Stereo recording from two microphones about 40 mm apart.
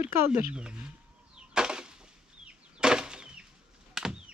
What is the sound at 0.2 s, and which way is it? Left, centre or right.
Speech, right.